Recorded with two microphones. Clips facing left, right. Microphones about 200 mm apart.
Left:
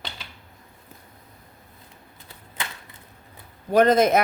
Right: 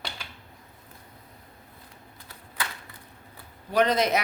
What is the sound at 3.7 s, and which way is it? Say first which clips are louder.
Speech: left 6 dB; 50° left (ahead or behind).